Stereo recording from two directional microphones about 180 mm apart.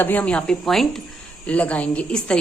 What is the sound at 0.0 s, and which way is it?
A woman's voice, 10° left (ahead or behind).